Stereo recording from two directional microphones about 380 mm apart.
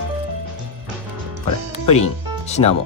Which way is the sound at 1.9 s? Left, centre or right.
Centre.